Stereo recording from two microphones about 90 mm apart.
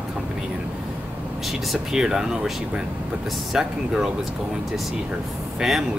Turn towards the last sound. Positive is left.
turn(degrees=-5)  # may be behind; listen again after turning